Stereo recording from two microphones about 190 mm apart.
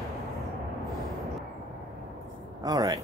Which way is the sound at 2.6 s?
20° right (ahead or behind).